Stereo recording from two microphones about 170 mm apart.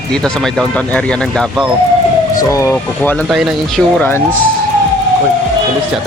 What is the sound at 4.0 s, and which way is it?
Speech, 10° left (ahead or behind).